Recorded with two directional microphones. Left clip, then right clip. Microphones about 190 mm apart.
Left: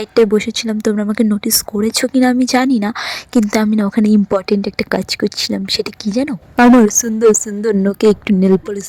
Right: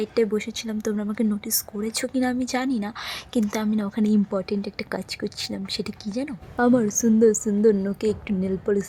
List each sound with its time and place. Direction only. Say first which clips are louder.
0.0 s speech: left 11 dB; 40° left (ahead or behind)